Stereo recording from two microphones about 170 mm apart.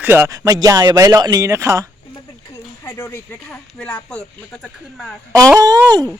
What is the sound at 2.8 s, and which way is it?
Speech, 15° left (ahead or behind).